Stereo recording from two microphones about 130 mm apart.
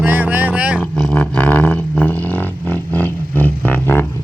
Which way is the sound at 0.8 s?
10° left (ahead or behind).